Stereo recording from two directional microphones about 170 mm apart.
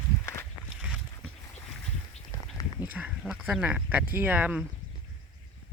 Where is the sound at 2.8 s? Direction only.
10° right (ahead or behind).